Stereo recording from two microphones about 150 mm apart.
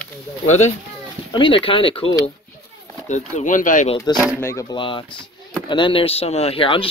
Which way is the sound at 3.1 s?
50° left (ahead or behind).